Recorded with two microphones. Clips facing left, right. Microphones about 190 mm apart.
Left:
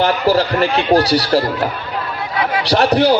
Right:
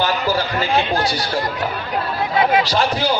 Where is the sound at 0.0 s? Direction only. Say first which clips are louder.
Left 5 dB; 65° left (ahead or behind).